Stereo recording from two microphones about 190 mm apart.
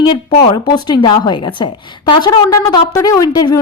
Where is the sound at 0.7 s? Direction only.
25° left (ahead or behind).